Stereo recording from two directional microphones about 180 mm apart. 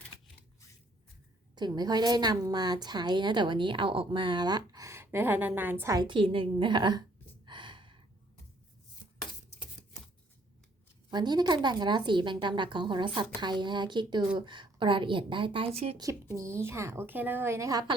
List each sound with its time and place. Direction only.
1.5 s a woman's voice: 25° right (ahead or behind)
5.8 s a woman's voice: 20° right (ahead or behind)
7.4 s gasp: 25° right (ahead or behind)
11.1 s a woman's voice: 25° right (ahead or behind)
16.3 s speech: 15° right (ahead or behind)